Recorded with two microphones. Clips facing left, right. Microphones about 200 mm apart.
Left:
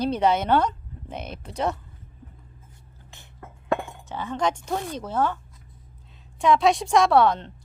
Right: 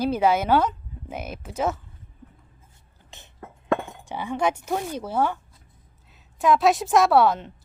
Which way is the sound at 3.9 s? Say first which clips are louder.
Right 2 dB; 15° right (ahead or behind).